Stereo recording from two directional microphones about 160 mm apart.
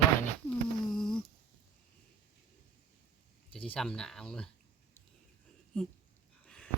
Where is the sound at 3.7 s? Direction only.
5° left (ahead or behind).